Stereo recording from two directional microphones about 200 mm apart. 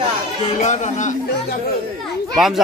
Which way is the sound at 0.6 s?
35° left (ahead or behind).